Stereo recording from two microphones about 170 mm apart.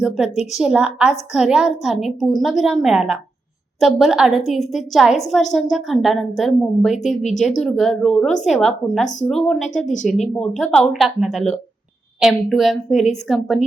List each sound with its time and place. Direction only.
0.5 s speech: 5° right (ahead or behind)
9.8 s speech: 45° left (ahead or behind)
10.3 s speech: 5° left (ahead or behind)